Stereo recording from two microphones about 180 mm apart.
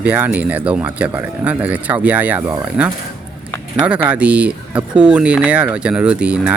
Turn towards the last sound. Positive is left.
turn(degrees=-5)  # may be behind; listen again after turning